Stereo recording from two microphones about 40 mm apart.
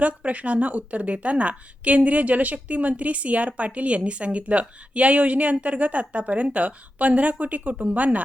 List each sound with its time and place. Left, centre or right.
0.0 s speech: right